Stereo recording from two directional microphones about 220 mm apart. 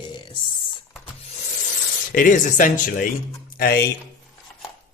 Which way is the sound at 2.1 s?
35° left (ahead or behind).